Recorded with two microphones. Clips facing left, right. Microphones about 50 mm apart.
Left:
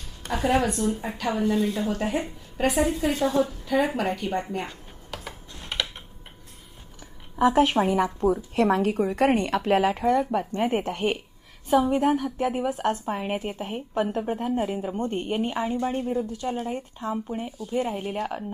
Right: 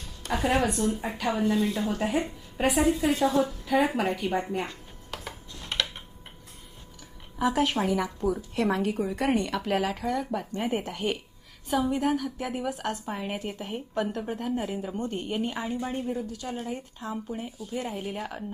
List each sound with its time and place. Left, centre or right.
0.3 s a woman's voice: centre
5.1 s a sound: centre
5.6 s typing: centre
7.3 s a woman's voice: left
9.0 s a woman's voice: left; by 15.0 s centre
15.0 s a woman's voice: left
16.2 s a woman's voice: left